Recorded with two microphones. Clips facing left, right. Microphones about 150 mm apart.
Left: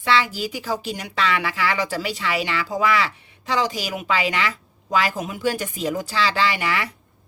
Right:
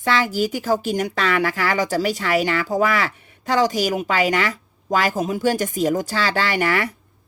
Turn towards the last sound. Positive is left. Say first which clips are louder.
# right 2 dB
turn(degrees=-45)  # may be behind; listen again after turning